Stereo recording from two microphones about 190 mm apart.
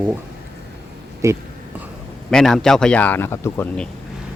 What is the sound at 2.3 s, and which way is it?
Speech, 5° left (ahead or behind).